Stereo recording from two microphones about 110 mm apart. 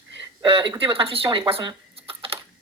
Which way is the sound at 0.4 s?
50° right (ahead or behind).